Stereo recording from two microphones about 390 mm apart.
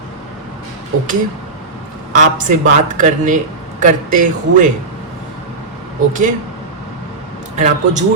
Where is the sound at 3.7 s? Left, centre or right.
Centre.